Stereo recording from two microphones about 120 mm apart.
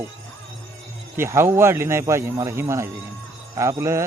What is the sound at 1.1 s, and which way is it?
Speech, 20° right (ahead or behind).